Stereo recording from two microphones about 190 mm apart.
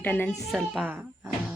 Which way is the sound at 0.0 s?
10° left (ahead or behind).